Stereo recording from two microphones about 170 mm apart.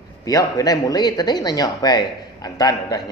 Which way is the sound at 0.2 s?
20° left (ahead or behind).